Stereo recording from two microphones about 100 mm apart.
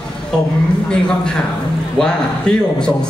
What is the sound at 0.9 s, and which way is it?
A man's voice, 10° left (ahead or behind).